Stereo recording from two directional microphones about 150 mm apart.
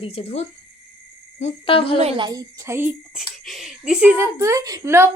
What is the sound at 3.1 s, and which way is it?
Speech, centre (ahead or behind).